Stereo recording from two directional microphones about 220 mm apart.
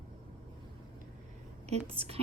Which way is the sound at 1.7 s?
25° right (ahead or behind).